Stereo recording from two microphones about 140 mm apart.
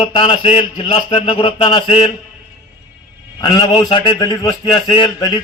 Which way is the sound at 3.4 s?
30° left (ahead or behind).